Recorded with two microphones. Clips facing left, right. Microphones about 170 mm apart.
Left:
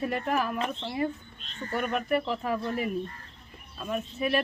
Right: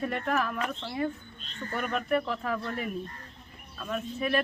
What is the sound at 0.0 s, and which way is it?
Speech, 5° left (ahead or behind).